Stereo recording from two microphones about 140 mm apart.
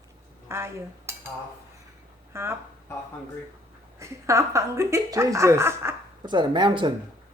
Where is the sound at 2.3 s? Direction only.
15° right (ahead or behind).